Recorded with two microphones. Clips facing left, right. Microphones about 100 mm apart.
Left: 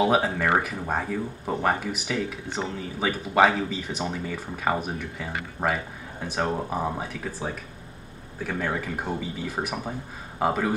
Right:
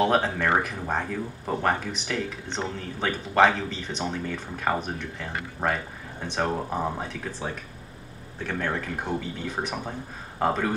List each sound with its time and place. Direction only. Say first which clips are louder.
0.0 s speech: left 1 dB; 5° left (ahead or behind)